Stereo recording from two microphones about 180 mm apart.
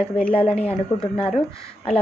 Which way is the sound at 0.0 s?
5° left (ahead or behind).